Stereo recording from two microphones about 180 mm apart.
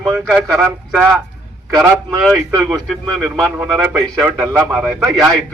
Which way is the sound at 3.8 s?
15° right (ahead or behind).